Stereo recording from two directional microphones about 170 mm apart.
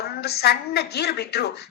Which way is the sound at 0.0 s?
70° left (ahead or behind).